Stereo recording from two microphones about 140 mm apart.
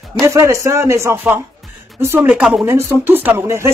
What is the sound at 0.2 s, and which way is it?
A man's voice, 20° right (ahead or behind).